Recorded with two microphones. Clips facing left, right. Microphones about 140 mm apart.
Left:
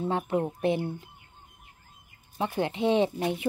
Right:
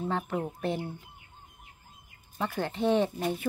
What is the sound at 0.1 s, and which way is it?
Speech, 20° left (ahead or behind).